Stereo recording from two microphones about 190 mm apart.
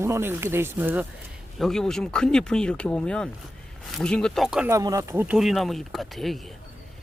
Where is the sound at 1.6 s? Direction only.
Centre (ahead or behind).